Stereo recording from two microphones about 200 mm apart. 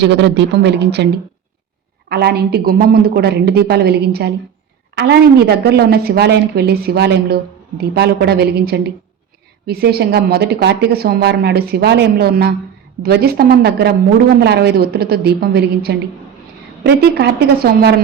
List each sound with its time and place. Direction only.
0.0 s speech: 60° right (ahead or behind)
2.0 s a woman's voice: 50° right (ahead or behind)